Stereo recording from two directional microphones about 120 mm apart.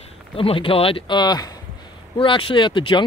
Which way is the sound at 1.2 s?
35° left (ahead or behind).